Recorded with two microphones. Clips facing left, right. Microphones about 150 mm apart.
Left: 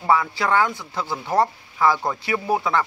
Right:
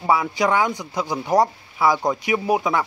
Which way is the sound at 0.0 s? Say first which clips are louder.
Right 1 dB; 10° right (ahead or behind).